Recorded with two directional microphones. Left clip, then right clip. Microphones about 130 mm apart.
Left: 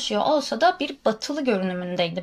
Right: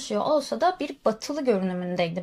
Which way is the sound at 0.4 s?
40° right (ahead or behind).